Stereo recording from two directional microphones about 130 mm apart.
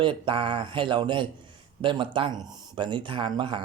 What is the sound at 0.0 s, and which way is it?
Speech, 40° right (ahead or behind).